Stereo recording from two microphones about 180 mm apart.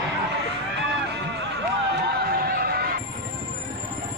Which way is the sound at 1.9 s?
60° right (ahead or behind).